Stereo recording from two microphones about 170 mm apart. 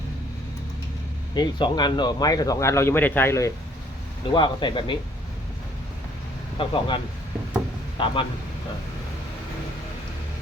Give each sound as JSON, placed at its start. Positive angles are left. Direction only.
{"t": 1.4, "sound": "speech", "side_deg": 25}
{"t": 4.4, "sound": "speech", "side_deg": 25}
{"t": 6.6, "sound": "speech", "side_deg": 30}